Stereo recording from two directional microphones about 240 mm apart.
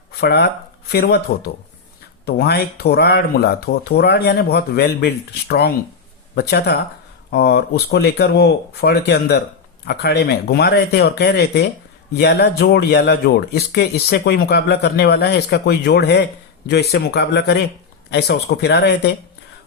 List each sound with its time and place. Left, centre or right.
0.2 s speech: left